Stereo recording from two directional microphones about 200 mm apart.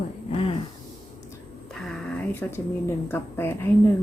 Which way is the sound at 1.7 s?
Centre (ahead or behind).